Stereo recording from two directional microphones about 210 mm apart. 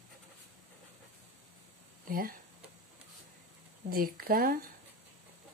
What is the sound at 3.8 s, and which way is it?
Speech, 45° right (ahead or behind).